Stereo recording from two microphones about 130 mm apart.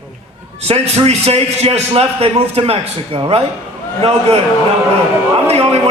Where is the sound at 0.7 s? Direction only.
55° right (ahead or behind).